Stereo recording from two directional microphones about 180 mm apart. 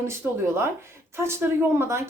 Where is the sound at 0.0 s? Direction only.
15° right (ahead or behind).